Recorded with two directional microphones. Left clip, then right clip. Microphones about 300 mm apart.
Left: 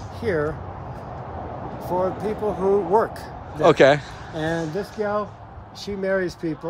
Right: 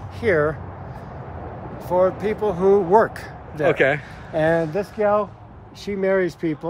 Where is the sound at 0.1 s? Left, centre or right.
Centre.